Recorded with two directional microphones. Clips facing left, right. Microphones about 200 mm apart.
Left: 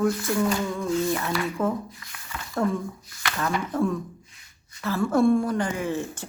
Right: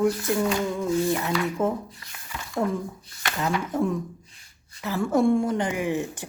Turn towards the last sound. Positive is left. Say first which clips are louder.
# right 2 dB
turn(degrees=-15)  # may be behind; listen again after turning